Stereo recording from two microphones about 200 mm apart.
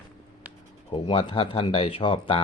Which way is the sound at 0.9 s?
25° left (ahead or behind).